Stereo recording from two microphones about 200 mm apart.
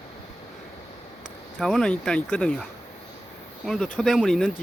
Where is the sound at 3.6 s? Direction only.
5° left (ahead or behind).